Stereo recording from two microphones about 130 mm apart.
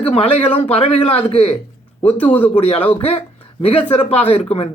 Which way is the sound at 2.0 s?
10° left (ahead or behind).